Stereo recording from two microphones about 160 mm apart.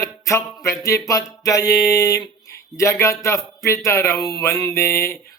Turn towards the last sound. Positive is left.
turn(degrees=15)  # may be behind; listen again after turning